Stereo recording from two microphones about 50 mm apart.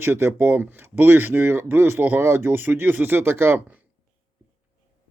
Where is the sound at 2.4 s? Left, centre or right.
Right.